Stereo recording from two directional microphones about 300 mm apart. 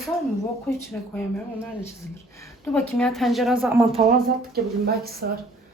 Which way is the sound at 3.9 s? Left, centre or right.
Right.